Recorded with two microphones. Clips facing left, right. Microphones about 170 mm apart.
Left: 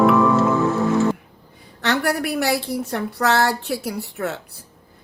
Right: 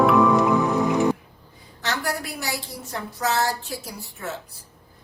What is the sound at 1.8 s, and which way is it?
A woman's voice, 65° left (ahead or behind).